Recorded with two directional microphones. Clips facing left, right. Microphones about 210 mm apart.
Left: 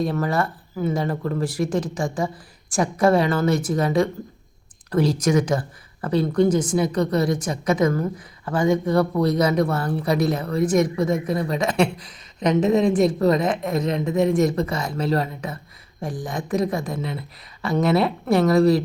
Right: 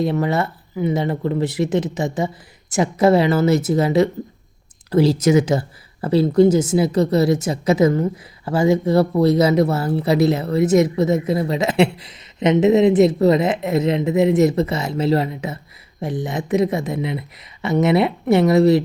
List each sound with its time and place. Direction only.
0.0 s a woman's voice: 25° right (ahead or behind)